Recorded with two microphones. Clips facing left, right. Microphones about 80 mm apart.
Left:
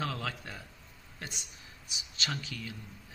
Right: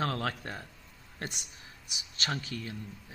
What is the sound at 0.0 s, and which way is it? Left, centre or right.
Speech, right.